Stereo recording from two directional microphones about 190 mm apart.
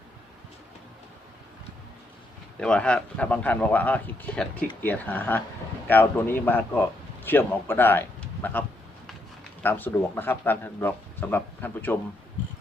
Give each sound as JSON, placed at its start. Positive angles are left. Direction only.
{"t": 2.6, "sound": "a man's voice", "side_deg": 5}
{"t": 9.6, "sound": "a man's voice", "side_deg": 10}